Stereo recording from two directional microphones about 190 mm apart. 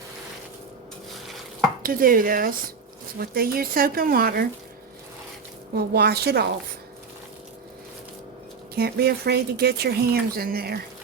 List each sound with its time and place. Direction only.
1.8 s speech: 50° right (ahead or behind)
5.7 s speech: 55° right (ahead or behind)
8.7 s speech: 55° right (ahead or behind)